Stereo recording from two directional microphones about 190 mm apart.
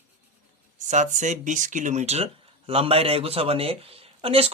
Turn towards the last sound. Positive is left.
turn(degrees=-30)  # may be behind; listen again after turning